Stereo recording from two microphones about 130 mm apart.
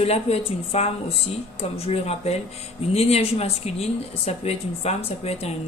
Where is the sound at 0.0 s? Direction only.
50° left (ahead or behind).